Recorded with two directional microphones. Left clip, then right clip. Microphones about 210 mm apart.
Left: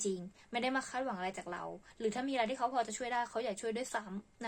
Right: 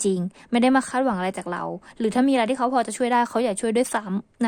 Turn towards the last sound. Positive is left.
turn(degrees=-50)  # may be behind; listen again after turning